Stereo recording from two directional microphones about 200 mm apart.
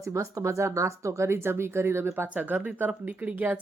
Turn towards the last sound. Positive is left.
turn(degrees=-10)  # may be behind; listen again after turning